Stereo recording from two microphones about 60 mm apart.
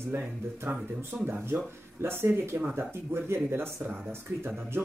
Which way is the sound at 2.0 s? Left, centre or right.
Right.